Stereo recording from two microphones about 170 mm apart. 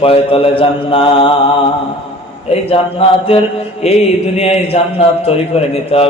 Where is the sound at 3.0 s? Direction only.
35° left (ahead or behind).